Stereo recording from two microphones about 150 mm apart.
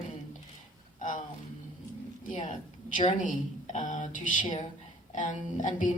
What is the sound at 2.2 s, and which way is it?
Speech, 60° left (ahead or behind).